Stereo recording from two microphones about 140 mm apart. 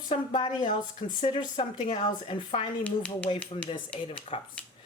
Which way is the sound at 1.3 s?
35° left (ahead or behind).